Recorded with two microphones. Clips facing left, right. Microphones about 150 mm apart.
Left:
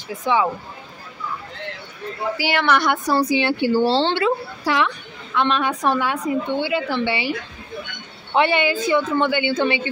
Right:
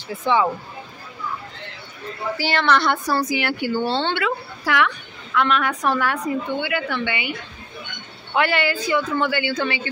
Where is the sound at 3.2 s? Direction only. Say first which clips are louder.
Left 4 dB; 25° left (ahead or behind).